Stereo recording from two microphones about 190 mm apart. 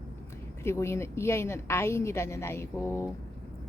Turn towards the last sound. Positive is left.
turn(degrees=15)  # may be behind; listen again after turning